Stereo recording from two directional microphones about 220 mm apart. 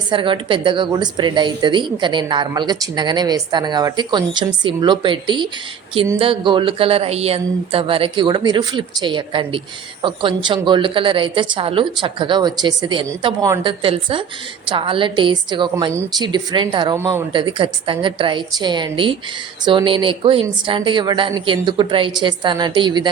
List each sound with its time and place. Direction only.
0.1 s a woman's voice: 20° right (ahead or behind)